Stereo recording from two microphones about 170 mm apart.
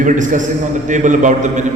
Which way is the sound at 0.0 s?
50° right (ahead or behind).